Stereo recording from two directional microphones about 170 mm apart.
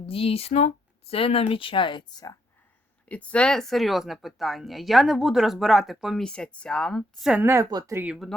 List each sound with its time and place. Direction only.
0.0 s speech: 35° left (ahead or behind)
3.1 s speech: 5° left (ahead or behind); by 8.0 s 20° right (ahead or behind)
8.0 s speech: 5° right (ahead or behind)